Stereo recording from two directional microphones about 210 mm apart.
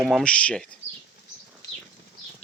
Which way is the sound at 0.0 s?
Centre (ahead or behind).